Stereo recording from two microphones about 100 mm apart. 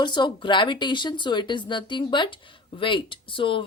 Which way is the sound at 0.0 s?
50° left (ahead or behind).